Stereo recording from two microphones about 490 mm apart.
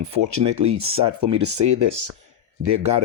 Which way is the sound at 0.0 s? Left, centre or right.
Right.